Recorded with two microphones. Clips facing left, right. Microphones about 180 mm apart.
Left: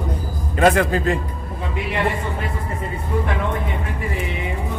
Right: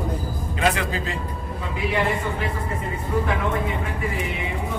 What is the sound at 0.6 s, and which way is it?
Speech, 50° left (ahead or behind).